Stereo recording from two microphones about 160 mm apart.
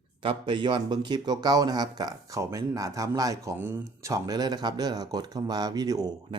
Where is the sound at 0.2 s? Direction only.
30° right (ahead or behind).